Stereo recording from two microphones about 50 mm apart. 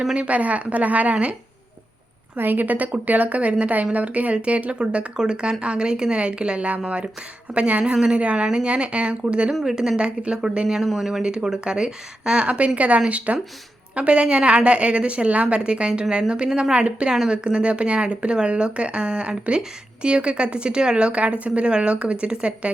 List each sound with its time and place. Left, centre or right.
0.1 s a woman's voice: right
2.3 s a woman's voice: right
9.6 s a woman's voice: centre
10.8 s speech: centre
11.2 s a woman's voice: centre